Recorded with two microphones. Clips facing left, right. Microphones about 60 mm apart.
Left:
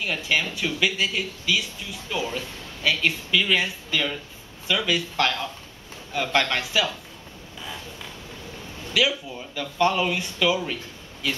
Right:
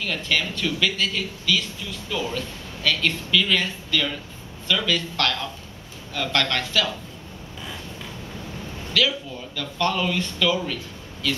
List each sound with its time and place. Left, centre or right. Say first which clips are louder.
0.0 s speech: even; centre
8.9 s speech: even; centre